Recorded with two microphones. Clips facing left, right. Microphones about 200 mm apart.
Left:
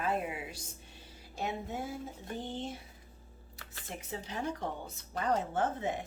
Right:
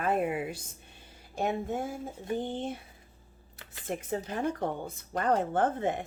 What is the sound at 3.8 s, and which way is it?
Speech, 50° right (ahead or behind).